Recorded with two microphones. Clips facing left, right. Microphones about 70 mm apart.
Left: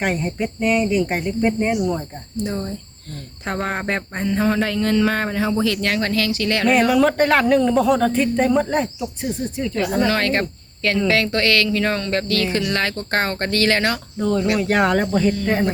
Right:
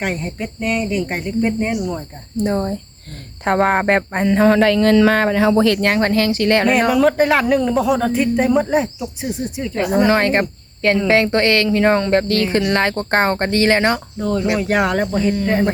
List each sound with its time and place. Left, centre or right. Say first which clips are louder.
0.0 s speech: left 1 dB; centre
2.4 s speech: right 6 dB; right
3.4 s a sound: right 9 dB; right
5.6 s speech: right 5 dB; right
6.9 s speech: right 2 dB; centre; by 14.0 s right
14.2 s speech: right 1 dB; centre